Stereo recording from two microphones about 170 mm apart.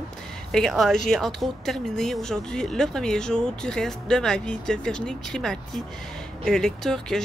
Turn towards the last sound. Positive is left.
turn(degrees=5)  # may be behind; listen again after turning